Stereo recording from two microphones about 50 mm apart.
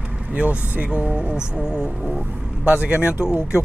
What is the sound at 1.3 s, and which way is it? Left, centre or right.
Speech, centre.